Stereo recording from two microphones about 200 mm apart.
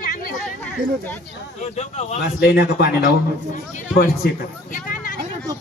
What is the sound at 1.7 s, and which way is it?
Speech, 30° left (ahead or behind).